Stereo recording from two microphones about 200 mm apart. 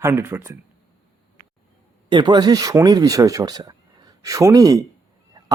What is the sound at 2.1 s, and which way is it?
Speech, 20° right (ahead or behind).